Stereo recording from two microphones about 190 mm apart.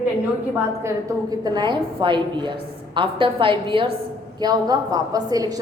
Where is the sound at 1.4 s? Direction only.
25° right (ahead or behind).